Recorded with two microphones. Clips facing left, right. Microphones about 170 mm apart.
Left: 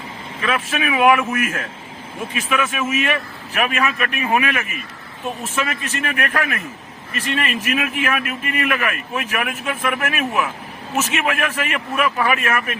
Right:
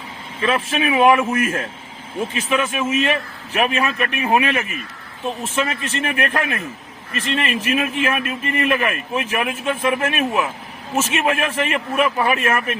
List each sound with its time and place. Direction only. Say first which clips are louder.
0.4 s a man's voice: right 2 dB; 25° right (ahead or behind)